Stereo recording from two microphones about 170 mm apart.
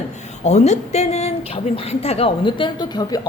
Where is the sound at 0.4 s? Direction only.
40° left (ahead or behind).